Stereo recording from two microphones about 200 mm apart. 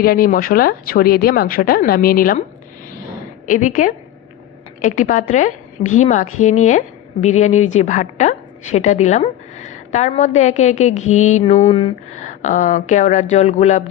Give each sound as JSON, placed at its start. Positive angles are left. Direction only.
{"t": 0.0, "sound": "speech", "side_deg": 45}
{"t": 3.4, "sound": "a woman's voice", "side_deg": 40}